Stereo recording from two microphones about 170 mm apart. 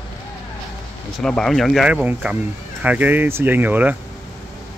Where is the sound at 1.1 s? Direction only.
5° left (ahead or behind).